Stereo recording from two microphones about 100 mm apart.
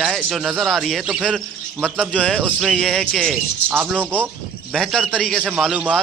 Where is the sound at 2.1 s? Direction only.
10° left (ahead or behind).